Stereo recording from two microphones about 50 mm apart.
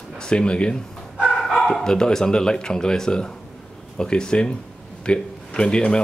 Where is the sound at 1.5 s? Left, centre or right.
Centre.